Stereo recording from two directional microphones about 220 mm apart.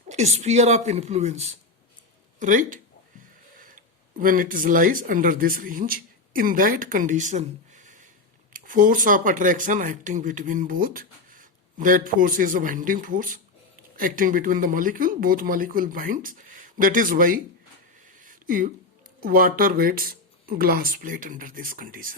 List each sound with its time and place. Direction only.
0.1 s speech: 30° right (ahead or behind)
18.2 s a sound: 35° right (ahead or behind)
19.2 s speech: 40° right (ahead or behind)